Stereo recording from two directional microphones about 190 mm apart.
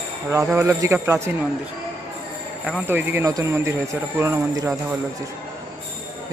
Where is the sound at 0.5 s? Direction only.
15° right (ahead or behind).